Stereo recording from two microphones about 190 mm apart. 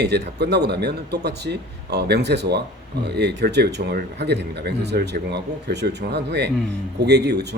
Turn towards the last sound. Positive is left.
turn(degrees=-60)  # may be behind; listen again after turning